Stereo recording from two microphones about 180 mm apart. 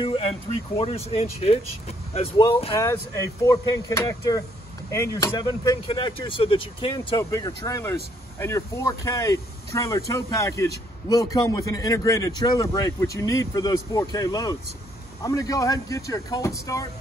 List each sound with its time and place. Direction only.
0.7 s speech: 35° left (ahead or behind)
2.4 s speech: 25° left (ahead or behind)